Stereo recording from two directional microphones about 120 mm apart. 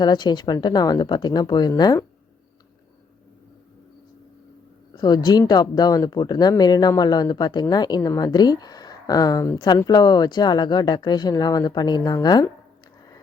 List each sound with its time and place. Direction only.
0.0 s speech: 40° left (ahead or behind)
4.9 s speech: 35° left (ahead or behind)